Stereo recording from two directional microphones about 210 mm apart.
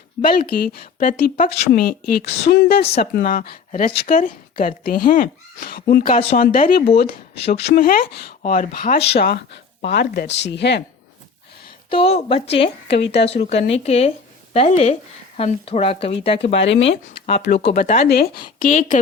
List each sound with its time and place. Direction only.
0.3 s a woman's voice: 45° left (ahead or behind)
11.9 s speech: 25° left (ahead or behind)
13.0 s a woman's voice: 50° left (ahead or behind)
13.2 s speech: 30° left (ahead or behind)
17.3 s a woman's voice: 50° left (ahead or behind)
17.7 s speech: 35° left (ahead or behind)
18.1 s speech: 45° left (ahead or behind)